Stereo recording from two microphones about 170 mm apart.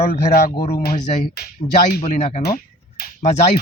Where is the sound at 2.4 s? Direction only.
65° left (ahead or behind).